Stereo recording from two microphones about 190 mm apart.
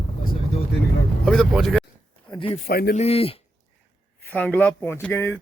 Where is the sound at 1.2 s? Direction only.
Centre (ahead or behind).